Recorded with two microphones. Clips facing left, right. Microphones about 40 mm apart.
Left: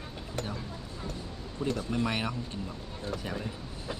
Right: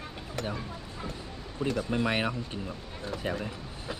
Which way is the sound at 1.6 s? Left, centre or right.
Right.